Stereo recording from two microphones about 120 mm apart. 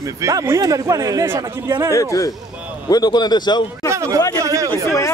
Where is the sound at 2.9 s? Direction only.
35° left (ahead or behind).